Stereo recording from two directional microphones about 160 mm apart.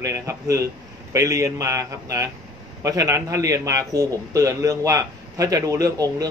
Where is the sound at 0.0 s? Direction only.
20° right (ahead or behind).